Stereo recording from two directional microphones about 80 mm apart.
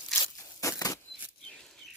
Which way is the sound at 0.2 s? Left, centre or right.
Left.